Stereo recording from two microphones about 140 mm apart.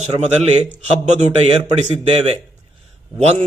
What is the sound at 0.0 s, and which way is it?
Speech, 50° right (ahead or behind).